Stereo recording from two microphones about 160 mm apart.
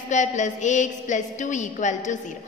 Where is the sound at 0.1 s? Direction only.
50° left (ahead or behind).